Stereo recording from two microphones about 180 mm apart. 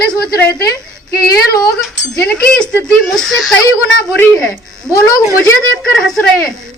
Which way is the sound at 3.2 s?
Centre (ahead or behind).